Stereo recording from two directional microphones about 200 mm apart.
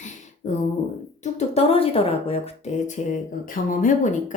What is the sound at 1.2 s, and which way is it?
A woman's voice, 30° left (ahead or behind).